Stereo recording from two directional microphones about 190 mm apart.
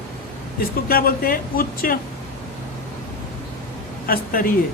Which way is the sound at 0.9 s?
50° left (ahead or behind).